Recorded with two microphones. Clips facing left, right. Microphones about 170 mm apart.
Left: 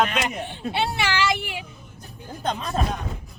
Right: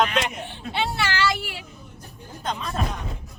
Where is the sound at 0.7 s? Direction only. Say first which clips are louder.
Left 1 dB; 15° left (ahead or behind).